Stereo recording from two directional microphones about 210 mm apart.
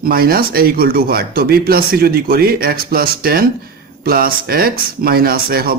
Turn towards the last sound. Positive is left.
turn(degrees=-45)  # may be behind; listen again after turning